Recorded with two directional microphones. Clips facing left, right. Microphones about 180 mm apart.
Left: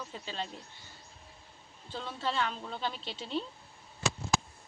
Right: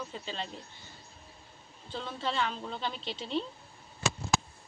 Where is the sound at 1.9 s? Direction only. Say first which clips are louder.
Even; 5° left (ahead or behind).